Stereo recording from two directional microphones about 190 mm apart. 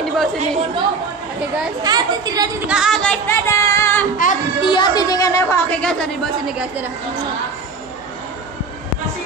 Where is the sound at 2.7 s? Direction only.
Centre (ahead or behind).